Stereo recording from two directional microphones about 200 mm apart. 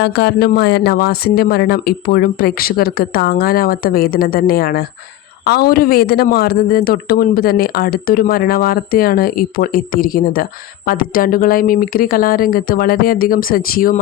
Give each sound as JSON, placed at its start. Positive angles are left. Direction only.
{"t": 0.0, "sound": "speech", "side_deg": 55}